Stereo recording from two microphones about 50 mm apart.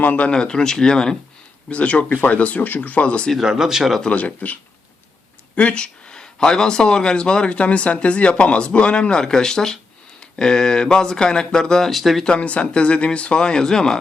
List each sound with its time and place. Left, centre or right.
0.2 s speech: centre
1.7 s speech: left
3.4 s speech: centre
4.1 s speech: left
5.5 s speech: left
11.9 s speech: centre
12.2 s speech: left